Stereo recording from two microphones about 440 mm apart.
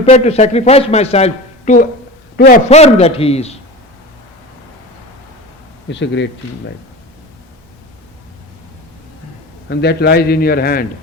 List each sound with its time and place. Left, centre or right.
0.0 s speech: centre
5.9 s a man's voice: left
9.6 s a man's voice: left